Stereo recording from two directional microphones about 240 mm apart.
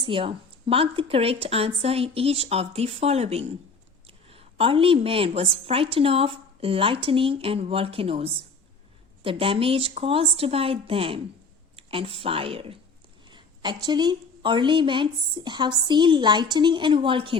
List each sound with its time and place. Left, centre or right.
0.0 s a woman's voice: right